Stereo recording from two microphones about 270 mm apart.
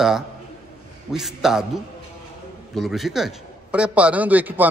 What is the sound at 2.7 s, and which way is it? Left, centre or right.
A man's voice, centre.